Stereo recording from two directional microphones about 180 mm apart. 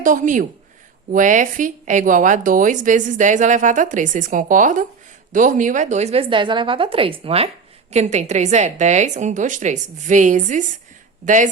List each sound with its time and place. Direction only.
0.0 s a woman's voice: 45° right (ahead or behind)